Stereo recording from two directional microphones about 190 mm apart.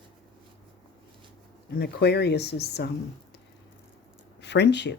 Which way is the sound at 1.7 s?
60° left (ahead or behind).